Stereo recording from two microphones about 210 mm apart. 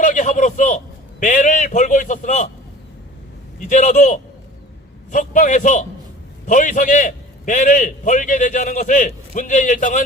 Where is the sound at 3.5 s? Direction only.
35° left (ahead or behind).